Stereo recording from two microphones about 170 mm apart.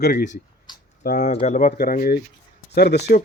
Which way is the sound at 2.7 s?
75° left (ahead or behind).